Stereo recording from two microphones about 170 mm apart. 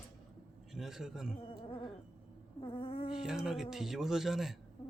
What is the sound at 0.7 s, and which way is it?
Speech, centre (ahead or behind).